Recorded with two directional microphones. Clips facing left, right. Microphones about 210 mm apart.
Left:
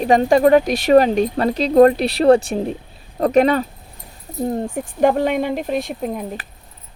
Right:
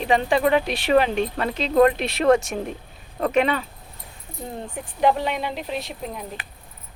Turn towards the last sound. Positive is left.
turn(degrees=50)  # may be behind; listen again after turning